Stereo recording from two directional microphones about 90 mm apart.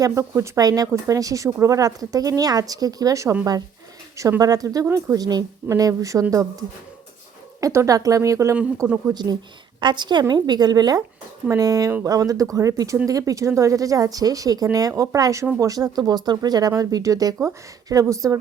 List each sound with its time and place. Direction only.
0.1 s speech: 35° right (ahead or behind)
7.6 s speech: 35° right (ahead or behind)
9.1 s speech: 50° right (ahead or behind)